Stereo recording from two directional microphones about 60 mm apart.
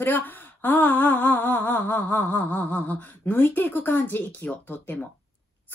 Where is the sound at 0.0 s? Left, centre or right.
Left.